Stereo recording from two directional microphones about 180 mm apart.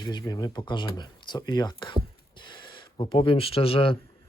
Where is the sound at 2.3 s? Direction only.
25° left (ahead or behind).